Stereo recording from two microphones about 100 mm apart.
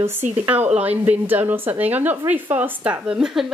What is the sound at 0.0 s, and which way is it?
Speech, 20° right (ahead or behind).